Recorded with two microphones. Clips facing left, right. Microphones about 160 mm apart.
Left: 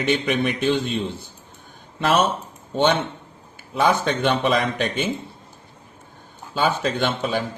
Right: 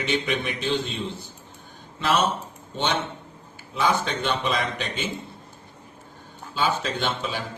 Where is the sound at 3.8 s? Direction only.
55° left (ahead or behind).